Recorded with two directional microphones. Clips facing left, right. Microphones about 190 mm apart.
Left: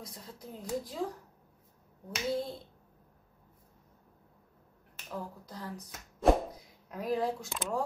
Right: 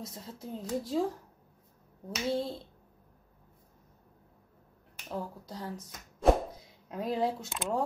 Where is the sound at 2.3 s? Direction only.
30° right (ahead or behind).